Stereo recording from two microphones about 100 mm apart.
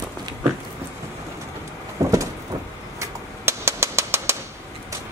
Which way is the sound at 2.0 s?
35° right (ahead or behind).